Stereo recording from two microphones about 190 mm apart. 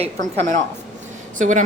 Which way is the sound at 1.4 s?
40° right (ahead or behind).